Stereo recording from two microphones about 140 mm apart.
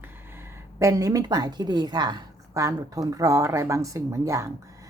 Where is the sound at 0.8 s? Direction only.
20° right (ahead or behind).